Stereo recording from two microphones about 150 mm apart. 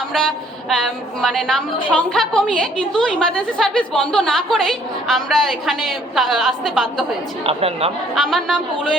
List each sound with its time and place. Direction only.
0.1 s a woman's voice: centre (ahead or behind)
7.4 s a woman's voice: 40° right (ahead or behind)
8.1 s a woman's voice: centre (ahead or behind)